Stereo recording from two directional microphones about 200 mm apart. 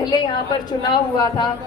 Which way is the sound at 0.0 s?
20° left (ahead or behind).